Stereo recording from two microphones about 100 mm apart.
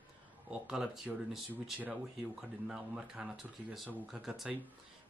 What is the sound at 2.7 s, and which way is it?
Speech, 5° right (ahead or behind).